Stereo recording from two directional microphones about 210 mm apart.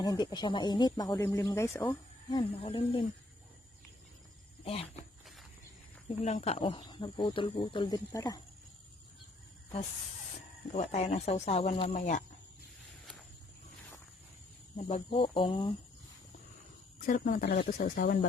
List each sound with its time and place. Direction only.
0.0 s speech: 20° left (ahead or behind)
2.3 s speech: 25° left (ahead or behind)
4.6 s speech: 30° left (ahead or behind)
6.2 s speech: 30° left (ahead or behind)
10.7 s speech: 30° left (ahead or behind)
14.8 s speech: 30° left (ahead or behind)
17.1 s speech: 40° left (ahead or behind)